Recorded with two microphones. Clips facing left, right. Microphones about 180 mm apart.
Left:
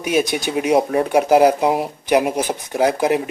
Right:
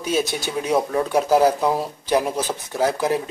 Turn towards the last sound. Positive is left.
turn(degrees=15)  # may be behind; listen again after turning